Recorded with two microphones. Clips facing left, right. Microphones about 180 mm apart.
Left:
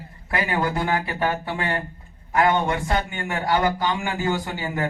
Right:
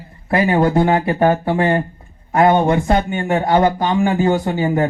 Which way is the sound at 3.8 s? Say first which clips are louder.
Right 9 dB; 40° right (ahead or behind).